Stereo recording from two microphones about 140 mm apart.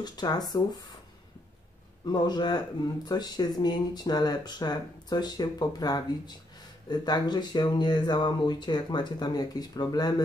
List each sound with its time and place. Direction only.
0.0 s speech: 30° left (ahead or behind)
2.0 s speech: 30° left (ahead or behind)